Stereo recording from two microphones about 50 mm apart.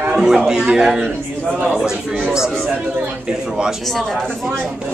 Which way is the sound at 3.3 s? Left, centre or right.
Centre.